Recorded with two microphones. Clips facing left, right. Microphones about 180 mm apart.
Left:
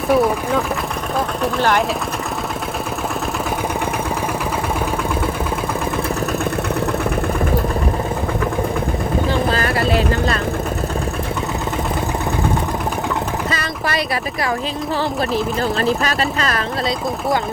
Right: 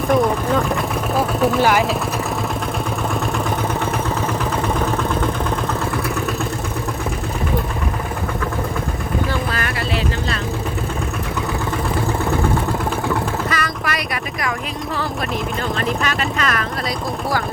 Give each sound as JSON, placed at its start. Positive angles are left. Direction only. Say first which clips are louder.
{"t": 0.1, "sound": "speech", "louder": "left 1 dB", "side_deg": 5}
{"t": 1.4, "sound": "speech", "louder": "right 2 dB", "side_deg": -5}
{"t": 9.3, "sound": "vehicle", "louder": "left 5 dB", "side_deg": 30}
{"t": 13.5, "sound": "a sound", "louder": "left 1 dB", "side_deg": 30}
{"t": 15.8, "sound": "speech", "louder": "left 2 dB", "side_deg": 35}